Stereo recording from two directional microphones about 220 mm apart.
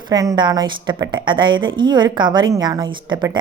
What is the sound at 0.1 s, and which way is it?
A woman's voice, 15° right (ahead or behind).